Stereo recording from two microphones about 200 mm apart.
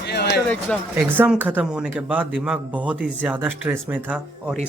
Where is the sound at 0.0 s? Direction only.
55° left (ahead or behind).